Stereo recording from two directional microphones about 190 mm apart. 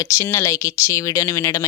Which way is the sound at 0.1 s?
15° left (ahead or behind).